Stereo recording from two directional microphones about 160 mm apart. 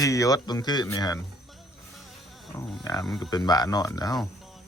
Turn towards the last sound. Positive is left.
turn(degrees=25)  # may be behind; listen again after turning